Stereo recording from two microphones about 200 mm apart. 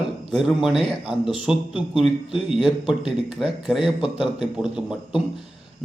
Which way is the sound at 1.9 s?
Centre (ahead or behind).